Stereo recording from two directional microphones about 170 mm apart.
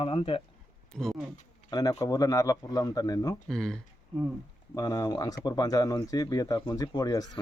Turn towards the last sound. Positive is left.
turn(degrees=20)  # may be behind; listen again after turning